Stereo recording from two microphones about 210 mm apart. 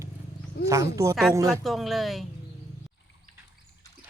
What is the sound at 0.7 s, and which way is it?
Speech, 15° right (ahead or behind).